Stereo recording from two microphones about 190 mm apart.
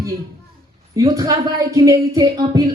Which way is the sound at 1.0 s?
20° right (ahead or behind).